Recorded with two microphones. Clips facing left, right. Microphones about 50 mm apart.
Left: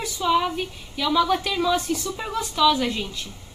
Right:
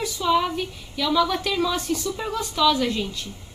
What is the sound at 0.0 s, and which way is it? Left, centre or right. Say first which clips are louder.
Speech: even; centre.